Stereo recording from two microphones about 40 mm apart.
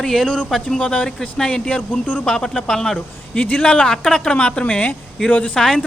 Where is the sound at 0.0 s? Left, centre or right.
Centre; by 2.2 s left.